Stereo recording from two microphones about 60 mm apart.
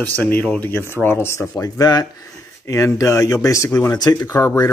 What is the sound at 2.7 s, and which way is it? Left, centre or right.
Speech, left.